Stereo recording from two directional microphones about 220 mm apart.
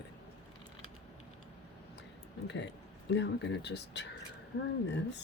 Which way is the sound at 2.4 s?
50° left (ahead or behind).